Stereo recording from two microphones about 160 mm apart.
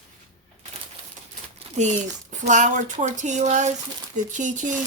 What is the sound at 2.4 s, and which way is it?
Speech, 50° right (ahead or behind).